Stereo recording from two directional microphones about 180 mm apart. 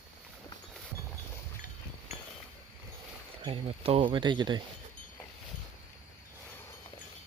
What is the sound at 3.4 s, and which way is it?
Speech, 30° right (ahead or behind).